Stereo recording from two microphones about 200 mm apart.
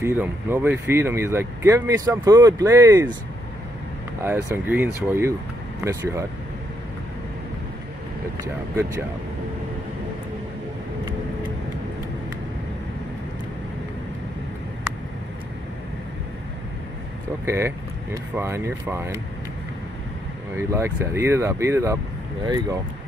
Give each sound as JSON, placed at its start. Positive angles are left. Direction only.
{"t": 0.0, "sound": "speech", "side_deg": -10}
{"t": 4.2, "sound": "speech", "side_deg": -15}
{"t": 17.5, "sound": "speech", "side_deg": -15}
{"t": 20.5, "sound": "speech", "side_deg": -15}